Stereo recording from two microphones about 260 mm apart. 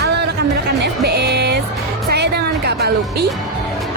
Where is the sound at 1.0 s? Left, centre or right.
Right.